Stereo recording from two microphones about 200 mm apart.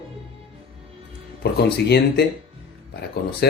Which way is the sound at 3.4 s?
55° left (ahead or behind).